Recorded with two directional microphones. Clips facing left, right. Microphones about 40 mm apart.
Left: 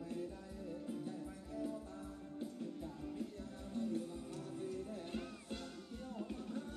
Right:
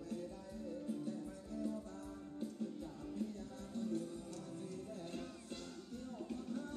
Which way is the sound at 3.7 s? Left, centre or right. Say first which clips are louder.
Left 1 dB; left.